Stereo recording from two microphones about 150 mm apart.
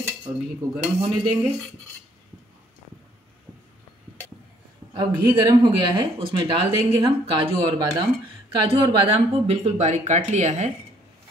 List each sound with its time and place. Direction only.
0.2 s cutlery: 25° right (ahead or behind)
5.5 s speech: 30° right (ahead or behind)
8.6 s speech: 40° right (ahead or behind)